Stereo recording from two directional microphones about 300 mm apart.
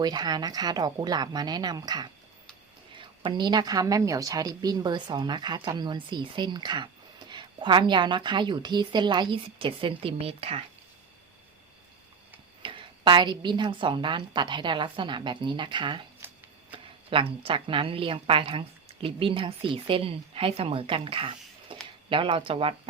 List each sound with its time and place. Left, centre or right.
0.0 s a woman's voice: centre
12.6 s a woman's voice: centre